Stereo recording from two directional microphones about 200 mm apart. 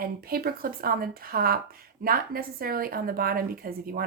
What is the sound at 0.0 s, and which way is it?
A woman's voice, 50° right (ahead or behind).